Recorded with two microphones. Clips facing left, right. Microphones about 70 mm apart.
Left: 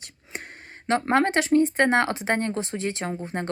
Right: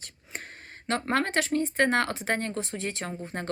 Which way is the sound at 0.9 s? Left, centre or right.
Left.